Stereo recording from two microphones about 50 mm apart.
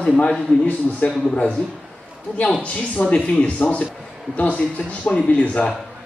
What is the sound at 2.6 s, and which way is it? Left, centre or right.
A man's voice, left.